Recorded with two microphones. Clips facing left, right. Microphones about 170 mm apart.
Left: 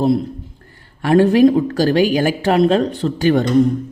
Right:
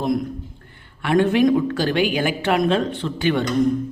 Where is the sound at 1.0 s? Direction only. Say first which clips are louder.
Left 5 dB; 35° left (ahead or behind).